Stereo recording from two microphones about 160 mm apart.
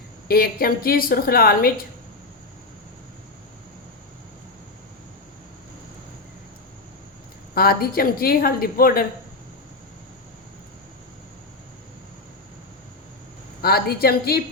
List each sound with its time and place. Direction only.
0.3 s a woman's voice: 70° left (ahead or behind)
7.5 s a woman's voice: 70° left (ahead or behind)
13.6 s a woman's voice: 75° left (ahead or behind)